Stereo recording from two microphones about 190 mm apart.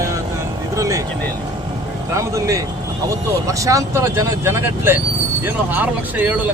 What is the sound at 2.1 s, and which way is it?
Speech, 15° right (ahead or behind).